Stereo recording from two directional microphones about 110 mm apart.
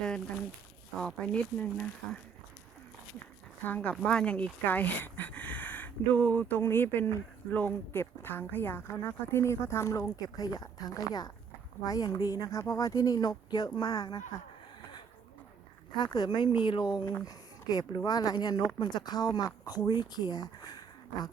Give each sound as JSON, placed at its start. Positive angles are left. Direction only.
{"t": 0.9, "sound": "speech", "side_deg": 5}
{"t": 3.6, "sound": "speech", "side_deg": 15}
{"t": 16.1, "sound": "speech", "side_deg": 40}